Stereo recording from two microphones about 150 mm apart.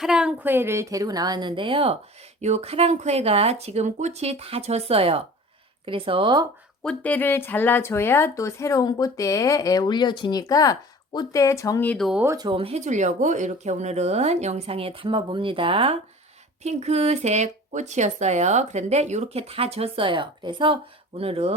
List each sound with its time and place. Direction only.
0.0 s a woman's voice: 5° right (ahead or behind); by 6.5 s 30° right (ahead or behind)
6.8 s speech: 10° left (ahead or behind)
11.9 s speech: centre (ahead or behind)
12.2 s a woman's voice: 20° right (ahead or behind)
12.5 s speech: 40° right (ahead or behind)